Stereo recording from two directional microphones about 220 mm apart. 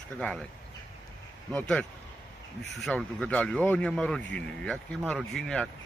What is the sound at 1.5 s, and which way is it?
Speech, 5° left (ahead or behind).